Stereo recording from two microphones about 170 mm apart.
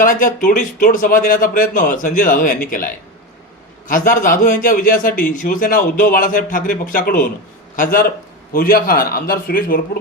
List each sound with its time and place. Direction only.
0.0 s a man's voice: 55° left (ahead or behind)